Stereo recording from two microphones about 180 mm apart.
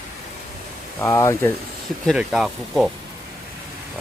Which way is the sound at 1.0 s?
15° left (ahead or behind).